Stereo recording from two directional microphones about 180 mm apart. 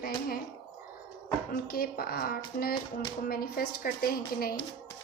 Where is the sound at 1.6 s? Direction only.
55° left (ahead or behind).